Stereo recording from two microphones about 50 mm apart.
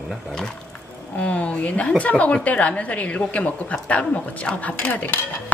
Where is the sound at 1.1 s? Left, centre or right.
Left.